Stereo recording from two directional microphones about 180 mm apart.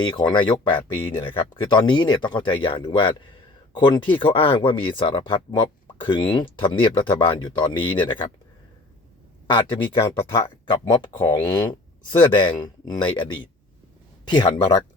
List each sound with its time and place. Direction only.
0.0 s speech: 25° left (ahead or behind)
9.5 s speech: 25° left (ahead or behind)